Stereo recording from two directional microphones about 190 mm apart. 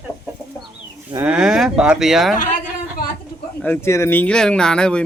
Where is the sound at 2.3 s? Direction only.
45° left (ahead or behind).